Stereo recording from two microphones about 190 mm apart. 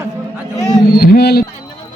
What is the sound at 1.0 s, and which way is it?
Speech, 55° left (ahead or behind).